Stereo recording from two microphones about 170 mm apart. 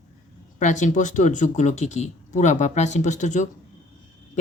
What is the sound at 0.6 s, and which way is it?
Speech, 45° left (ahead or behind).